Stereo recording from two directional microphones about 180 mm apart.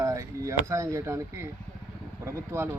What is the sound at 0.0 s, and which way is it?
Speech, 20° right (ahead or behind).